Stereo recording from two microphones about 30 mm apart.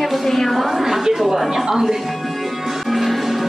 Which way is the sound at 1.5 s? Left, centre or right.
Centre.